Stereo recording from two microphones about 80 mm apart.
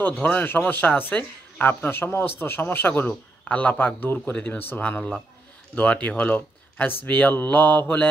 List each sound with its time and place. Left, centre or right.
0.0 s speech: left